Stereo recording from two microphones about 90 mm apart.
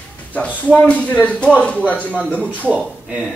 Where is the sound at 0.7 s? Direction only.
15° left (ahead or behind).